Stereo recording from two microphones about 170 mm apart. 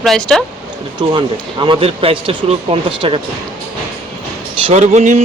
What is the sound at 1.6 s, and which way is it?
Speech, 30° right (ahead or behind).